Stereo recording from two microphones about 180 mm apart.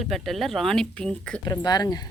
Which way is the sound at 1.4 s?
20° left (ahead or behind).